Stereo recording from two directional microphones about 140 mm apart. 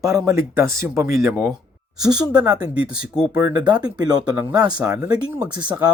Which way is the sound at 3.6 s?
30° right (ahead or behind).